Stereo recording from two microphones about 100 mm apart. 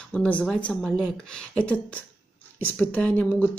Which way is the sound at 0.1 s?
10° left (ahead or behind).